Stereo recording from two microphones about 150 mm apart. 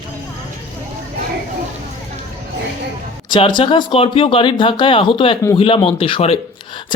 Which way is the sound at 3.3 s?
30° left (ahead or behind).